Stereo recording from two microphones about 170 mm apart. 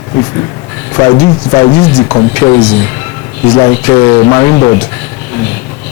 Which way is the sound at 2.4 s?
25° left (ahead or behind).